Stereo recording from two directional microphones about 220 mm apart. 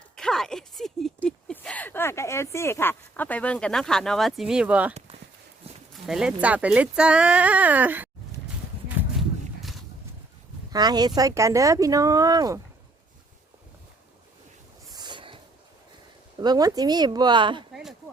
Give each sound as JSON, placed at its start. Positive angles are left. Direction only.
{"t": 0.2, "sound": "speech", "side_deg": 0}
{"t": 10.7, "sound": "speech", "side_deg": -20}
{"t": 14.9, "sound": "a sound", "side_deg": -20}
{"t": 16.4, "sound": "speech", "side_deg": -15}